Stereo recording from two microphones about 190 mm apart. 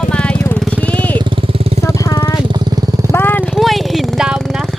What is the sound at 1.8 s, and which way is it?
Vehicle, 20° left (ahead or behind).